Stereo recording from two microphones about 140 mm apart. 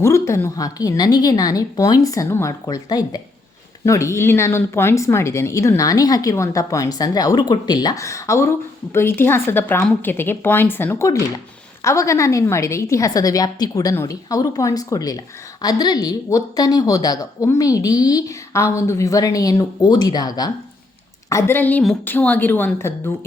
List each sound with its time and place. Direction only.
0.0 s a woman's voice: 20° left (ahead or behind)